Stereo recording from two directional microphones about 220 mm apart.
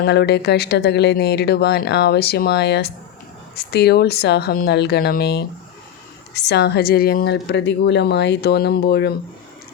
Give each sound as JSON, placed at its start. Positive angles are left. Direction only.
{"t": 0.0, "sound": "speech", "side_deg": 45}